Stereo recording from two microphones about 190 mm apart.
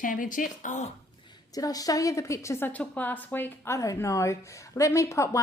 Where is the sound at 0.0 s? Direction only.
45° left (ahead or behind).